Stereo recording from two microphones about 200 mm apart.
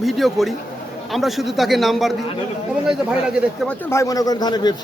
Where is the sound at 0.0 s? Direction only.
Centre (ahead or behind).